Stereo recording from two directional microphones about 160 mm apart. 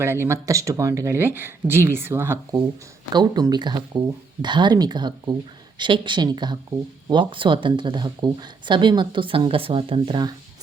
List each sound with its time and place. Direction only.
0.0 s speech: 15° right (ahead or behind)
3.1 s speech: 25° right (ahead or behind)